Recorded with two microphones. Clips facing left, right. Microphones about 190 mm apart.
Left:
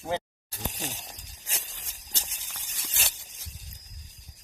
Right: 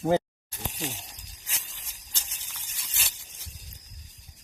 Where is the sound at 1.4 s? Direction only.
40° left (ahead or behind).